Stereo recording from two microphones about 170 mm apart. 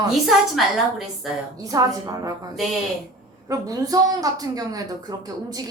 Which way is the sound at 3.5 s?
20° right (ahead or behind).